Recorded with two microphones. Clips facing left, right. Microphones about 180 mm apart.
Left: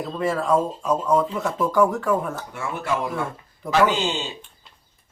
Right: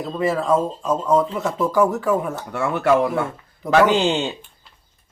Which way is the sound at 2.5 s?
70° right (ahead or behind).